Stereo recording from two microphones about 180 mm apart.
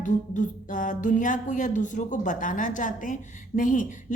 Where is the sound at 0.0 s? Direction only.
45° left (ahead or behind).